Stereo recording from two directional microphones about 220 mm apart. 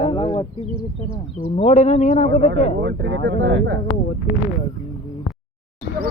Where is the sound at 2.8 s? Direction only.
55° right (ahead or behind).